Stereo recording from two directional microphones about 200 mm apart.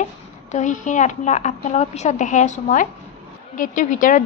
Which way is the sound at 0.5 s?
40° left (ahead or behind).